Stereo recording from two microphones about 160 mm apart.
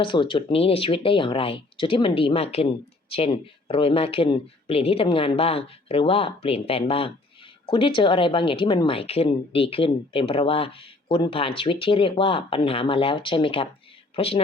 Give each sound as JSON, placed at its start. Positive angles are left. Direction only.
{"t": 0.0, "sound": "speech", "side_deg": 30}